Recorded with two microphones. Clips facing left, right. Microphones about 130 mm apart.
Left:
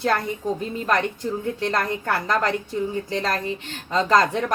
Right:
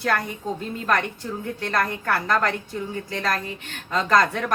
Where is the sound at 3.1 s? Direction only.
25° left (ahead or behind).